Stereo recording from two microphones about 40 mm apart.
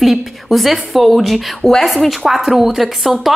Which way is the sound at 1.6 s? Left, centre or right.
Centre.